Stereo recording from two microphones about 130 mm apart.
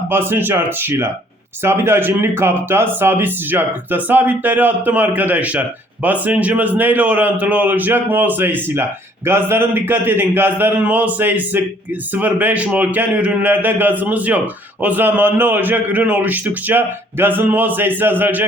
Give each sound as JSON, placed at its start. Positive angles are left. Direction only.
{"t": 0.1, "sound": "speech", "side_deg": -15}